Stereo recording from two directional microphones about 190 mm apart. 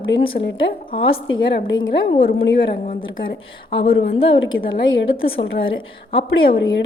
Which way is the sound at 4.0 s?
90° left.